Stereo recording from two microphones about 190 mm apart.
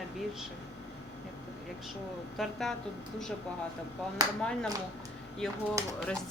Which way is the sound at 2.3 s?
Centre (ahead or behind).